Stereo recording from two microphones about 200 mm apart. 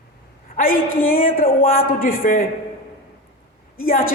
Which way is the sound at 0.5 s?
45° left (ahead or behind).